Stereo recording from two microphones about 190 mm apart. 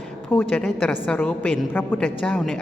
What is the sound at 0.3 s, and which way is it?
A woman's voice, 10° left (ahead or behind).